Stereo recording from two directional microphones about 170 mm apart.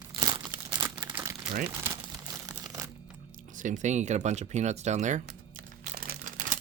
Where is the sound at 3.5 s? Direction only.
50° right (ahead or behind).